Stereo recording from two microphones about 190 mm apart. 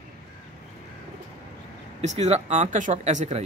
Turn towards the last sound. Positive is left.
turn(degrees=-35)  # may be behind; listen again after turning